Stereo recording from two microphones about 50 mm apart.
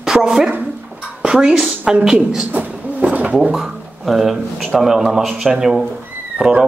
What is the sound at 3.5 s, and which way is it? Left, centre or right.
Speech, centre.